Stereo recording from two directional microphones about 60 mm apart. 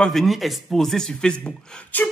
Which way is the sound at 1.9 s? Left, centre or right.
Left.